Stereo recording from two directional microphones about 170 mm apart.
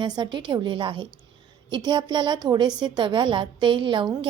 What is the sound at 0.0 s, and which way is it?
A woman's voice, 30° right (ahead or behind).